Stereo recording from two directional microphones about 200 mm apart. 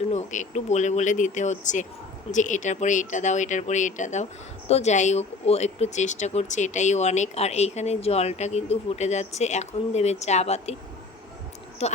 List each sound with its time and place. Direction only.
0.1 s speech: 35° left (ahead or behind)
11.8 s speech: 30° left (ahead or behind)